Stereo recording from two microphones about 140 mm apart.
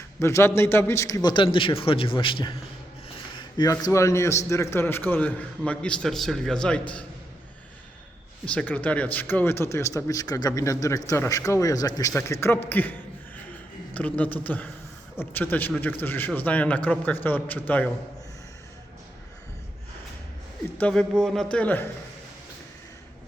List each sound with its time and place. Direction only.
0.2 s a man's voice: 20° left (ahead or behind)
8.4 s a man's voice: 10° left (ahead or behind)
12.6 s a sound: 15° left (ahead or behind)
13.9 s a man's voice: 10° left (ahead or behind)
20.7 s a man's voice: 10° left (ahead or behind)